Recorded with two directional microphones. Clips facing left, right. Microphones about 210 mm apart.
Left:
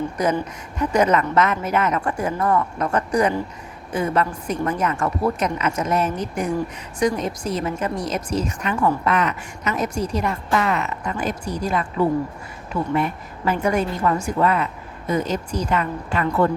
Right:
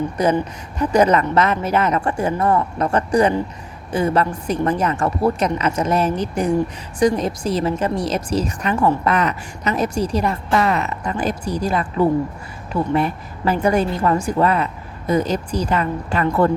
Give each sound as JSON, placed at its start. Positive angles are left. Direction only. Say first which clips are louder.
{"t": 0.2, "sound": "speech", "louder": "right 4 dB", "side_deg": -30}
{"t": 12.9, "sound": "speech", "louder": "right 2 dB", "side_deg": -35}